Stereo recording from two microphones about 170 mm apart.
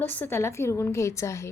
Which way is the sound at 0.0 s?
10° left (ahead or behind).